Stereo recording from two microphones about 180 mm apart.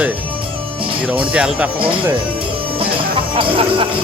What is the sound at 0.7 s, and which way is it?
Music, 30° right (ahead or behind).